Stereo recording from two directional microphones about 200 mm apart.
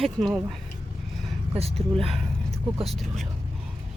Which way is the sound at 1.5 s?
30° right (ahead or behind).